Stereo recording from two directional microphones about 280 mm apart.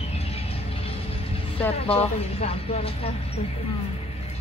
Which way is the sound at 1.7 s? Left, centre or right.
Left.